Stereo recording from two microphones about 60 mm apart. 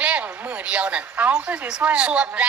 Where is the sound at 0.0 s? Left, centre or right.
Right.